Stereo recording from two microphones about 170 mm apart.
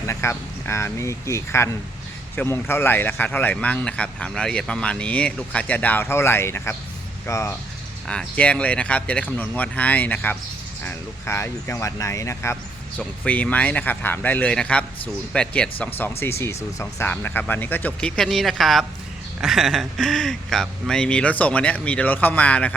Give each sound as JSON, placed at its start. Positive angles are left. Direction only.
{"t": 0.1, "sound": "speech", "side_deg": 15}
{"t": 8.0, "sound": "speech", "side_deg": 5}